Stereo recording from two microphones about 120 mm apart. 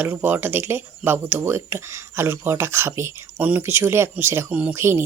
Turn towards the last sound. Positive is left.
turn(degrees=-20)  # may be behind; listen again after turning